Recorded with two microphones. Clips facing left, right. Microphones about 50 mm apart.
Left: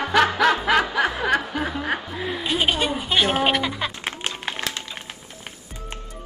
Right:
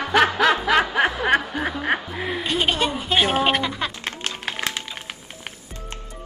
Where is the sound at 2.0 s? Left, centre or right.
Centre.